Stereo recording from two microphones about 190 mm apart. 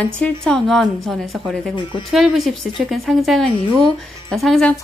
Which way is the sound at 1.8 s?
25° left (ahead or behind).